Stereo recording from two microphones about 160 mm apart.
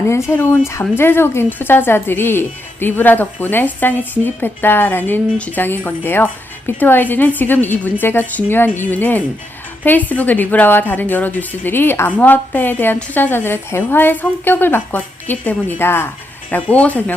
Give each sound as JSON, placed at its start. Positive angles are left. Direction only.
{"t": 0.1, "sound": "a woman's voice", "side_deg": 15}